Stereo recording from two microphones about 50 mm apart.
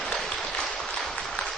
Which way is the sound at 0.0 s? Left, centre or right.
Centre.